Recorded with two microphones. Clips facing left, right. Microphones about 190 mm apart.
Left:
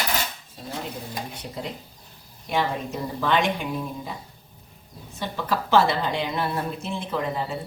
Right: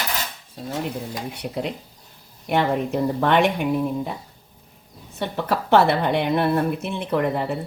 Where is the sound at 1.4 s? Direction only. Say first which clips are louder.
Right 6 dB; 65° right (ahead or behind).